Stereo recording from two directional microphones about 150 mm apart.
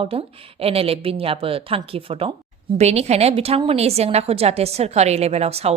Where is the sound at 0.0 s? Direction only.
40° right (ahead or behind).